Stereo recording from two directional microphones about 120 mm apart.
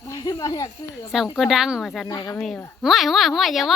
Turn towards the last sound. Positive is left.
turn(degrees=0)  # may be behind; listen again after turning